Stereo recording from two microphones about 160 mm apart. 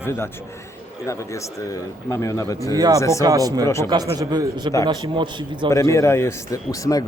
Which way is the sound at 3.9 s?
25° right (ahead or behind).